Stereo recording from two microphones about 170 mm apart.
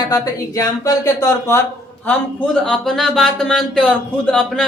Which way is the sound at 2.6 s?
5° left (ahead or behind).